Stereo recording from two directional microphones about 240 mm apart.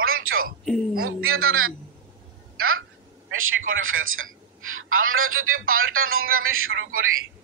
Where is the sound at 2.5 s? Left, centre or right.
Right.